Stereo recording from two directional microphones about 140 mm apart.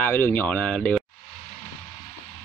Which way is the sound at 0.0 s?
15° left (ahead or behind).